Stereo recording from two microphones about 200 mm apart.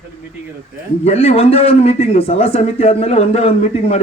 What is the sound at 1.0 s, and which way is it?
A man's voice, 30° left (ahead or behind).